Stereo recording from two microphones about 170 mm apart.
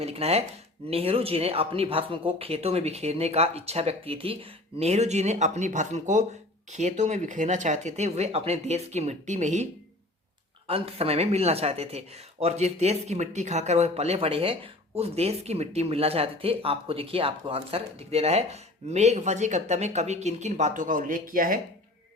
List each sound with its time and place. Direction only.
0.0 s speech: 35° right (ahead or behind)
10.7 s speech: 35° right (ahead or behind); by 21.6 s 55° right (ahead or behind)